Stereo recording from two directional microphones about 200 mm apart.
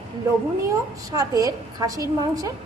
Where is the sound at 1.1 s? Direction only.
20° right (ahead or behind).